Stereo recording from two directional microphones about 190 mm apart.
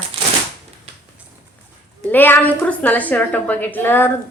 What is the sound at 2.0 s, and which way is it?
A woman's voice, 10° left (ahead or behind).